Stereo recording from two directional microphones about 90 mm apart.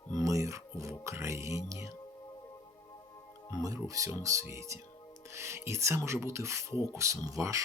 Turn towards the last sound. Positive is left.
turn(degrees=-40)  # may be behind; listen again after turning